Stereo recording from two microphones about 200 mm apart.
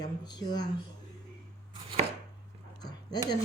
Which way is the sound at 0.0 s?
20° left (ahead or behind).